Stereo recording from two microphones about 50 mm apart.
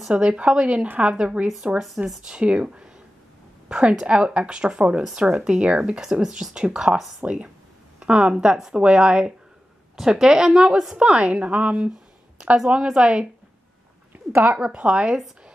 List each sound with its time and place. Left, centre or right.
0.1 s a woman's voice: right
9.9 s speech: centre
11.0 s speech: right
14.1 s a sound: right
14.6 s speech: right